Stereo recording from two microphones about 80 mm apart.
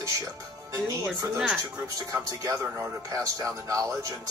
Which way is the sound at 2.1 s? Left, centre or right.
Right.